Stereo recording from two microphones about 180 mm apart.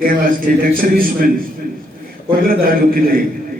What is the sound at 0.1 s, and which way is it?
A man's voice, 50° right (ahead or behind).